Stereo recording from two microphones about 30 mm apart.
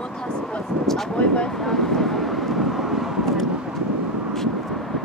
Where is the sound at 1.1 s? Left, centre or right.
Left.